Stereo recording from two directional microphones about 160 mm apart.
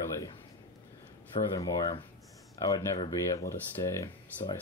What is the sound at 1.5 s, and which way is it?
Speech, 20° left (ahead or behind).